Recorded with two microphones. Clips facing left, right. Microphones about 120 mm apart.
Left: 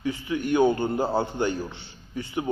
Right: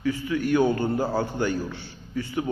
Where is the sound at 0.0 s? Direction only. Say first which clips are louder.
Right 2 dB; 25° left (ahead or behind).